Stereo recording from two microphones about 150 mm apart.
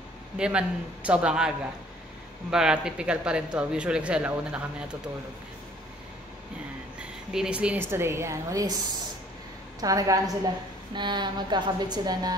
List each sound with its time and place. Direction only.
0.4 s speech: 5° right (ahead or behind)
7.0 s speech: 5° right (ahead or behind)
9.8 s speech: 25° right (ahead or behind)